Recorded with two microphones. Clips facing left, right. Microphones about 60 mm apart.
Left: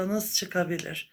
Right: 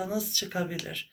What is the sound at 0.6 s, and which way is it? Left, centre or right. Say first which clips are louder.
Speech: left 4 dB; centre.